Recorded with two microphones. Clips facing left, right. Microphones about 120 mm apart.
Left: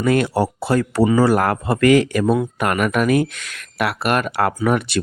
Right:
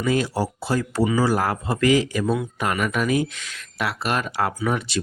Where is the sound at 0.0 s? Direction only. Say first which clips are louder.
Left 5 dB; 60° left (ahead or behind).